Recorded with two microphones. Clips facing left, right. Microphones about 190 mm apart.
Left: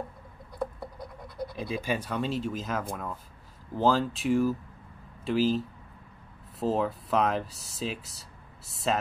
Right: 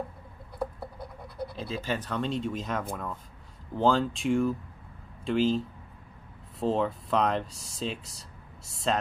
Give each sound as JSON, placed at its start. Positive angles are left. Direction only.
{"t": 0.9, "sound": "scratch", "side_deg": -30}
{"t": 1.6, "sound": "speech", "side_deg": 15}